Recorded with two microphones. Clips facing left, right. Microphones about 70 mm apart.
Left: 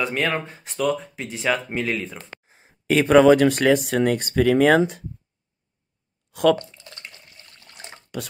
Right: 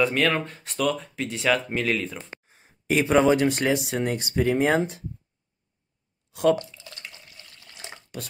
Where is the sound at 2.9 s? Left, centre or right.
Left.